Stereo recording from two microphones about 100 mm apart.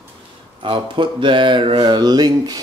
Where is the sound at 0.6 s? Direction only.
55° right (ahead or behind).